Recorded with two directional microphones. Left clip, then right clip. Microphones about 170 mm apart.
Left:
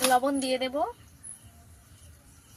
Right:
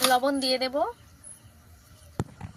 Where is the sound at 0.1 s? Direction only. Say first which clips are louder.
Right 1 dB; 10° left (ahead or behind).